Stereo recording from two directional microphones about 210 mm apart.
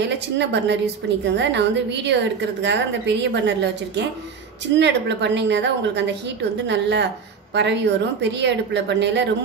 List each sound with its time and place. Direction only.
0.0 s a woman's voice: 55° right (ahead or behind)